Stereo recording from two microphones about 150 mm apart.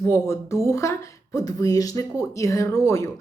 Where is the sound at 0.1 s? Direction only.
20° left (ahead or behind).